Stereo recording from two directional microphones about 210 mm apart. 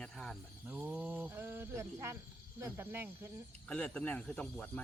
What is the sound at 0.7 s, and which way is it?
Speech, 10° right (ahead or behind).